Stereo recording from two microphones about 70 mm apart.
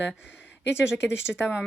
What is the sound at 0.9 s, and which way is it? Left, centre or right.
Speech, left.